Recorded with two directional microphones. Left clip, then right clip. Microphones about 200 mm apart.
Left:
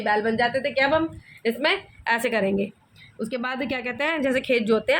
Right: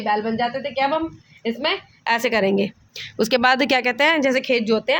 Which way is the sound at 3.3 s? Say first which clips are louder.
Right 11 dB; 45° right (ahead or behind).